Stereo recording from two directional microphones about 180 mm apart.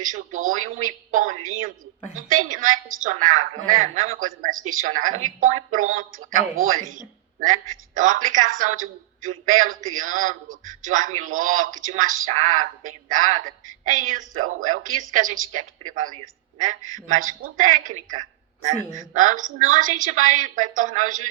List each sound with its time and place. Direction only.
0.1 s speech: 45° right (ahead or behind)
17.1 s speech: 45° right (ahead or behind)